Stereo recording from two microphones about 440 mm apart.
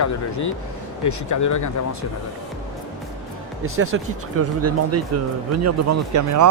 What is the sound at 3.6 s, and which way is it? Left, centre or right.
Speech, right.